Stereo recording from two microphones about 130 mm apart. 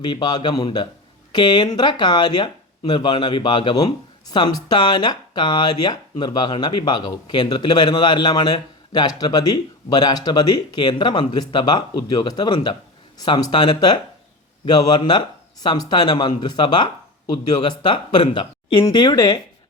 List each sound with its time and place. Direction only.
0.0 s speech: 30° left (ahead or behind)